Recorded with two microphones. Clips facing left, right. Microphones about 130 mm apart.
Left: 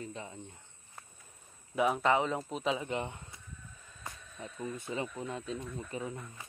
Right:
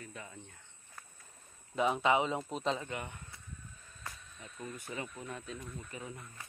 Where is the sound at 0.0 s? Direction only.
25° left (ahead or behind).